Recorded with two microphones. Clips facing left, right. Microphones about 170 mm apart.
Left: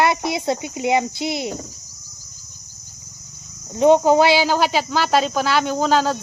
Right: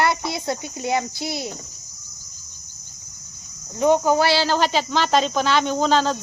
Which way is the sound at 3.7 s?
20° left (ahead or behind).